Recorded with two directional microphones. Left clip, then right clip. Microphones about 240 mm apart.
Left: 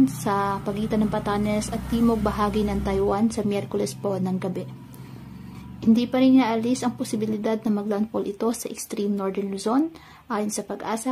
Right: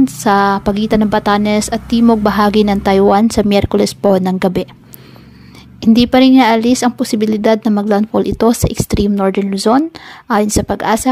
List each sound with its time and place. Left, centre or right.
0.0 s a woman's voice: right
5.8 s a woman's voice: right